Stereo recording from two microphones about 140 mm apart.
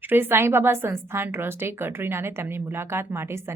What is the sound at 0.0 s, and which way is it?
Speech, 15° right (ahead or behind).